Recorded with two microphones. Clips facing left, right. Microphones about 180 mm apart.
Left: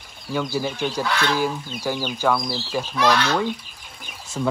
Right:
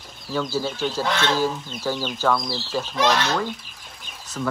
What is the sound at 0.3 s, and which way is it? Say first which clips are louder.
Speech: left 1 dB; 10° left (ahead or behind).